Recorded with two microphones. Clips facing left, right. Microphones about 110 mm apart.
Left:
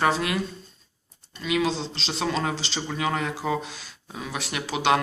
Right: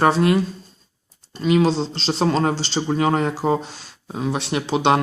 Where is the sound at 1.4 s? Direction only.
35° right (ahead or behind).